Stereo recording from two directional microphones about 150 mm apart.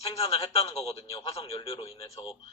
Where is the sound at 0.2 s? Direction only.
40° left (ahead or behind).